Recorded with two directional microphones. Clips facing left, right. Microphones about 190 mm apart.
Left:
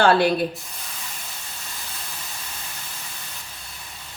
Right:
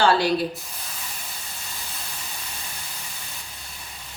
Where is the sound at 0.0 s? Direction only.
55° left (ahead or behind).